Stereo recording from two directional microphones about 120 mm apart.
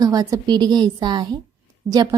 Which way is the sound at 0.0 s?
30° right (ahead or behind).